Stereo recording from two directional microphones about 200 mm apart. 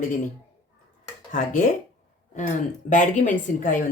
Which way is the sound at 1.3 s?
40° left (ahead or behind).